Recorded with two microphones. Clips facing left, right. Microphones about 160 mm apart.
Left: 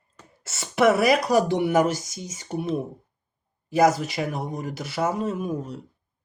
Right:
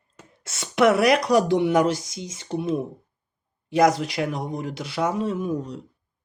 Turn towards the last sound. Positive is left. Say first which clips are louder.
# right 2 dB
turn(degrees=10)  # may be behind; listen again after turning